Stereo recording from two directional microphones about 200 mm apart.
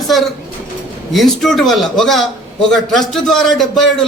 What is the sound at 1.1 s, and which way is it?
A man's voice, centre (ahead or behind).